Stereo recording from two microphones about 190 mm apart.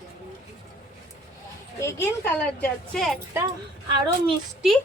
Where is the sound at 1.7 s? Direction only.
15° left (ahead or behind).